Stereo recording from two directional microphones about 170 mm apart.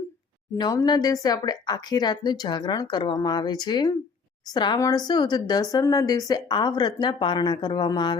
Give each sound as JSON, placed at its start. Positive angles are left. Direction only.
{"t": 0.5, "sound": "a woman's voice", "side_deg": 20}